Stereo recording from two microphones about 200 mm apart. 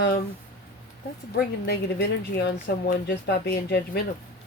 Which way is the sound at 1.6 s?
55° left (ahead or behind).